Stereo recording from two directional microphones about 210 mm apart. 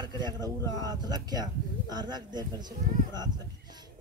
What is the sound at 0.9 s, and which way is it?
A man's voice, 20° right (ahead or behind).